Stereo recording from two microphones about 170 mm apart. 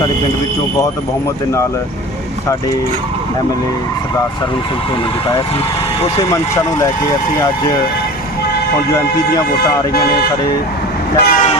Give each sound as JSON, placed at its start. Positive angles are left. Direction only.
{"t": 8.9, "sound": "speech", "side_deg": 20}
{"t": 11.2, "sound": "train", "side_deg": 65}